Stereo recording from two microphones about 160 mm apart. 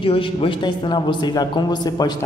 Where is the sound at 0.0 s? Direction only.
35° left (ahead or behind).